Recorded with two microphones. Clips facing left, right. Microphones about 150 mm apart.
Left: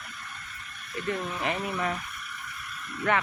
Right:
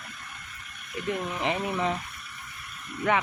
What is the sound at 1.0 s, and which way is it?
Speech, 15° right (ahead or behind).